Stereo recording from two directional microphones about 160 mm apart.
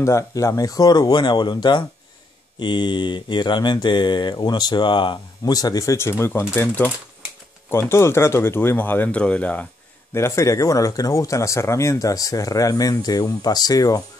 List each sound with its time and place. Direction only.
0.0 s mantra: 20° left (ahead or behind)
7.7 s speech: 15° left (ahead or behind)
10.1 s mantra: 20° left (ahead or behind)